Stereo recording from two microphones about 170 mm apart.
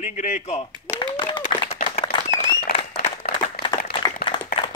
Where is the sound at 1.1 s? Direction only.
30° left (ahead or behind).